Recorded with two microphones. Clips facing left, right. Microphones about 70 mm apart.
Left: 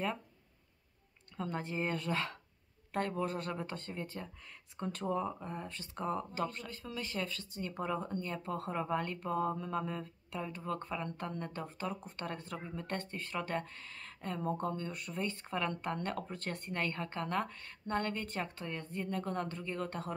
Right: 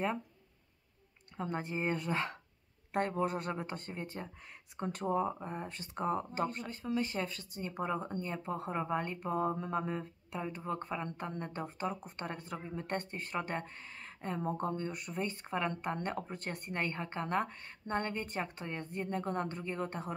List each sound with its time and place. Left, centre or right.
1.3 s a woman's voice: right